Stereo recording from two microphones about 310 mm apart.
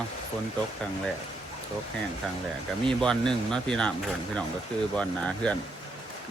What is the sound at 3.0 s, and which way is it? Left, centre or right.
Speech, centre.